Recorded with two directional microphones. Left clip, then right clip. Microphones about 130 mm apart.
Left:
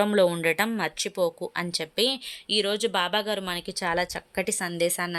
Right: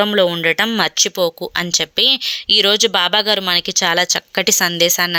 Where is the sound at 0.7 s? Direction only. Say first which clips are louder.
Right 13 dB; 25° right (ahead or behind).